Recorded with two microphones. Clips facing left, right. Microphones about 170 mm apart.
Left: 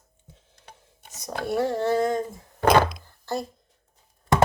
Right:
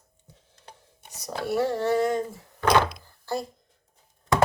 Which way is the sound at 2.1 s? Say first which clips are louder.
Even; 45° left (ahead or behind).